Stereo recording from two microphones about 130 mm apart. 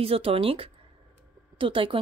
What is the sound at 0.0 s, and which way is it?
A woman's voice, 45° right (ahead or behind).